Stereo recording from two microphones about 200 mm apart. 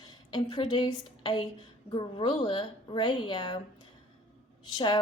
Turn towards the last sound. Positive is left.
turn(degrees=20)  # may be behind; listen again after turning